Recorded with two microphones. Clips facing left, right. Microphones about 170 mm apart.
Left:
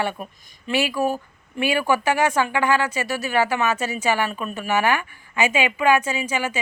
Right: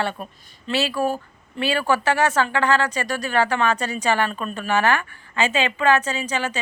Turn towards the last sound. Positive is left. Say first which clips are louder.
# left 1 dB
turn(degrees=10)  # may be behind; listen again after turning